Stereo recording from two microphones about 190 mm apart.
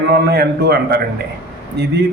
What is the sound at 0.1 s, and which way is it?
A man's voice, 55° right (ahead or behind).